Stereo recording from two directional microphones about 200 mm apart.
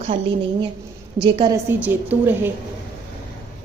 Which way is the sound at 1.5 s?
10° right (ahead or behind).